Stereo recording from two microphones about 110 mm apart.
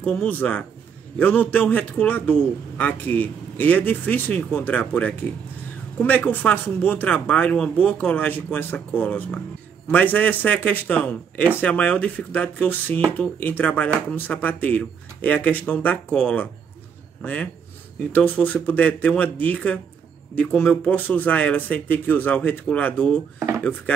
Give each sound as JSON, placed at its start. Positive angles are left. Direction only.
{"t": 0.0, "sound": "a man's voice", "side_deg": 15}